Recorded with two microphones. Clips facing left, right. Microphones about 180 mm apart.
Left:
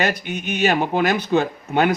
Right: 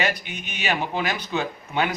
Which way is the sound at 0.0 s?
45° left (ahead or behind).